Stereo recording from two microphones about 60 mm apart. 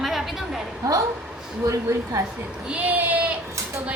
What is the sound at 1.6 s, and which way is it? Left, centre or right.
Speech, right.